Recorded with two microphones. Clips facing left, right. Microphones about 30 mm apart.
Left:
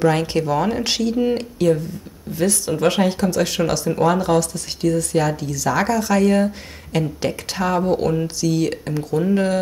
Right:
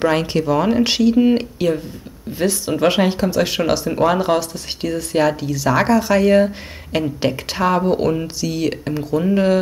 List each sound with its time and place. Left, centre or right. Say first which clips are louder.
0.1 s speech: right 2 dB; centre